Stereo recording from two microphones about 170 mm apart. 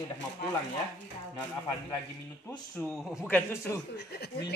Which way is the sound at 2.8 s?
5° right (ahead or behind).